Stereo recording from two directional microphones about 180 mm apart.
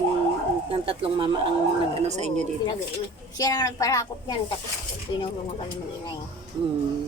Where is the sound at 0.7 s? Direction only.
30° right (ahead or behind).